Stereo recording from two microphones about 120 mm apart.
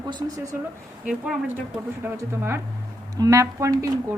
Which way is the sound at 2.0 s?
15° right (ahead or behind).